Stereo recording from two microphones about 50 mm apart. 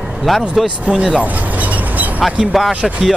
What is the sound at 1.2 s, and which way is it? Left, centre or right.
Vehicle, right.